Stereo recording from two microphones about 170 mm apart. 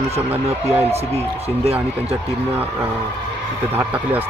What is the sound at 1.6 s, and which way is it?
Speech, 35° right (ahead or behind).